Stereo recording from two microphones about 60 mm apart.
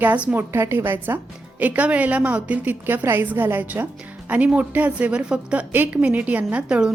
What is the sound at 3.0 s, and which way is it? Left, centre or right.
A woman's voice, right.